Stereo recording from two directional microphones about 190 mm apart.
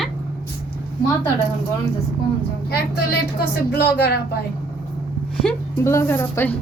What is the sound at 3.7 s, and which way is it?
Speech, 60° left (ahead or behind).